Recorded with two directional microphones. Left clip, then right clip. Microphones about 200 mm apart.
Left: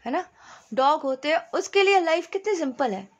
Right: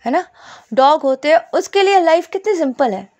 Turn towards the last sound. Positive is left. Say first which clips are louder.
# right 10 dB
turn(degrees=-35)  # may be behind; listen again after turning